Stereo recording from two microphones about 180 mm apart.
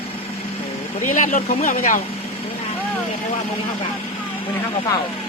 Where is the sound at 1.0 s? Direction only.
45° left (ahead or behind).